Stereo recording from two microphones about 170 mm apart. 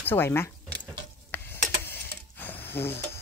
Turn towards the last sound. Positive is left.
turn(degrees=15)  # may be behind; listen again after turning